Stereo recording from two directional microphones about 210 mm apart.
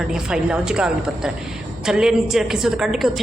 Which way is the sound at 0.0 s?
5° right (ahead or behind).